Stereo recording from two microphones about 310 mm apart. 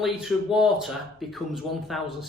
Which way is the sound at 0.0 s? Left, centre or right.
Centre.